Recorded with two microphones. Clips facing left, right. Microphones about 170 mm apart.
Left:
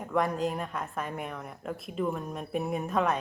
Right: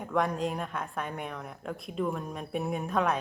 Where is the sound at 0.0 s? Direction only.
Centre (ahead or behind).